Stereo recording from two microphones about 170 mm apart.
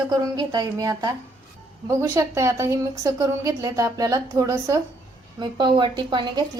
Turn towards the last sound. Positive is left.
turn(degrees=-25)  # may be behind; listen again after turning